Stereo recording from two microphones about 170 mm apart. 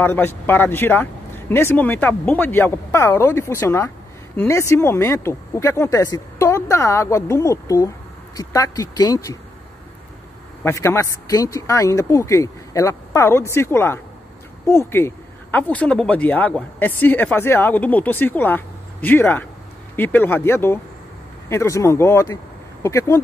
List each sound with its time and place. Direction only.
0.0 s speech: 10° left (ahead or behind)
10.6 s speech: 15° left (ahead or behind)